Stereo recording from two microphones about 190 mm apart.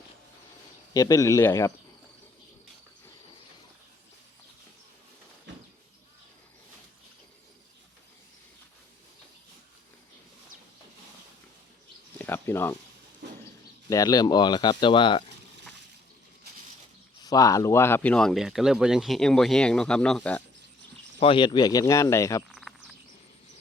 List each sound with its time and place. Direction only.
0.9 s speech: 15° left (ahead or behind)
12.2 s a sound: 10° left (ahead or behind)
13.9 s insect: 20° left (ahead or behind)
17.2 s speech: 20° left (ahead or behind)
21.2 s insect: 25° left (ahead or behind)
22.5 s a sound: centre (ahead or behind)